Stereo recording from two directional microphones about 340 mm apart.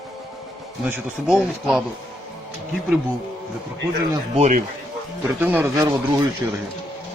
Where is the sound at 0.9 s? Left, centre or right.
Centre.